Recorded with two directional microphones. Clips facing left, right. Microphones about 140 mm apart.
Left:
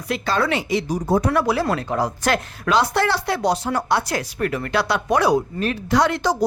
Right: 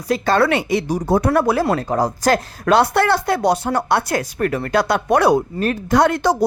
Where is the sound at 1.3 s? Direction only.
50° right (ahead or behind).